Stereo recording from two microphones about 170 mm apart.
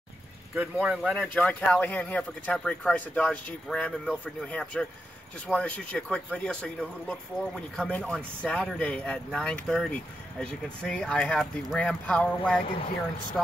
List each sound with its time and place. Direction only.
0.6 s a man's voice: 5° right (ahead or behind)